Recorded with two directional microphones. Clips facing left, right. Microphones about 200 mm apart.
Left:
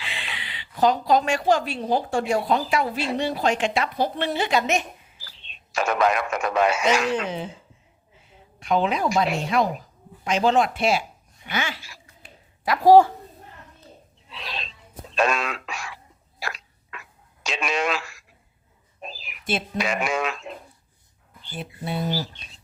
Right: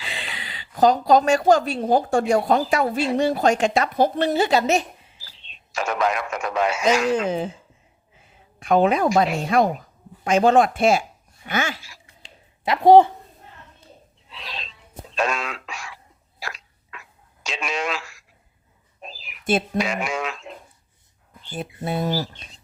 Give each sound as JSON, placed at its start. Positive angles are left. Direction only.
{"t": 0.0, "sound": "speech", "side_deg": -40}
{"t": 5.2, "sound": "speech", "side_deg": 60}
{"t": 6.8, "sound": "speech", "side_deg": -45}
{"t": 8.5, "sound": "a woman's voice", "side_deg": -50}
{"t": 12.6, "sound": "a woman's voice", "side_deg": -25}
{"t": 14.3, "sound": "a sound", "side_deg": 60}
{"t": 17.4, "sound": "radio", "side_deg": 60}
{"t": 19.0, "sound": "a sound", "side_deg": 60}
{"t": 19.5, "sound": "speech", "side_deg": -50}
{"t": 19.8, "sound": "speech", "side_deg": 60}
{"t": 21.5, "sound": "speech", "side_deg": -45}